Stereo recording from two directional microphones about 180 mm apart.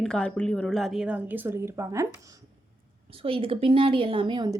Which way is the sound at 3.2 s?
30° right (ahead or behind).